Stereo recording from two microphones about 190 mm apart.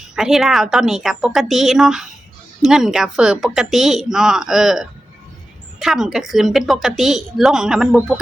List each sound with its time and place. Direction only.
0.2 s a woman's voice: centre (ahead or behind)